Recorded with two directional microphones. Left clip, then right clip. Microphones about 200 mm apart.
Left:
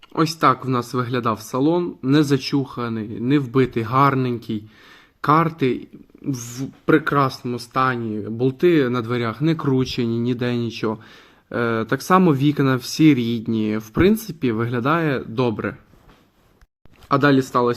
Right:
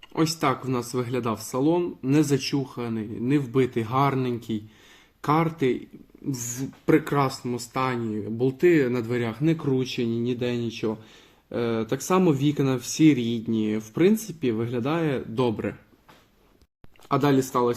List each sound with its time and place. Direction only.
0.1 s speech: 15° left (ahead or behind)
6.3 s speech: centre (ahead or behind)
17.1 s speech: 15° left (ahead or behind)